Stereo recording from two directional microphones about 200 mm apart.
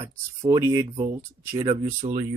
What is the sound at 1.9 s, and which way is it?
Speech, 35° right (ahead or behind).